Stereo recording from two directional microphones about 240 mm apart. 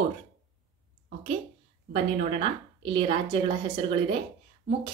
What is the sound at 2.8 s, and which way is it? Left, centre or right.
A woman's voice, right.